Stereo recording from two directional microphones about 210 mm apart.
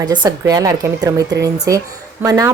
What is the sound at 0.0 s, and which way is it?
A woman's voice, 20° right (ahead or behind).